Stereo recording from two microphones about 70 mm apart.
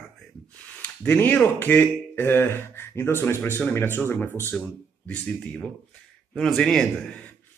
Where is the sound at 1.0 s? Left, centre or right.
Left.